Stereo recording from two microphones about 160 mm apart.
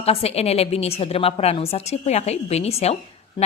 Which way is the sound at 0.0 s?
40° left (ahead or behind).